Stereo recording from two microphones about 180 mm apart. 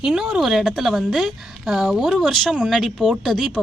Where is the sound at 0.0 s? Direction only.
5° right (ahead or behind).